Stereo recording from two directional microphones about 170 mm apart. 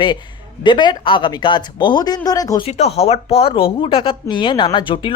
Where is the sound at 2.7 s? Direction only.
40° left (ahead or behind).